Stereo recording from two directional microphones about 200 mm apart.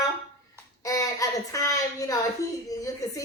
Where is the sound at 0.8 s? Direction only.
15° left (ahead or behind).